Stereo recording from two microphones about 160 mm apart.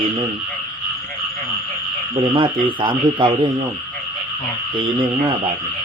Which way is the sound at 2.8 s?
30° right (ahead or behind).